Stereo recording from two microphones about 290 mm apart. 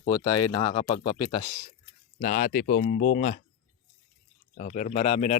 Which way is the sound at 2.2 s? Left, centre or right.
Left.